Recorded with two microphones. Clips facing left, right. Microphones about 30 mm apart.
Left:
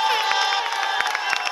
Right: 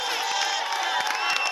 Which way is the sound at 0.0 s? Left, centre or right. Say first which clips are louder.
Left 6 dB; left.